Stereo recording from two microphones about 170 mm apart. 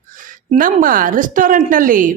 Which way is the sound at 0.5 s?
55° right (ahead or behind).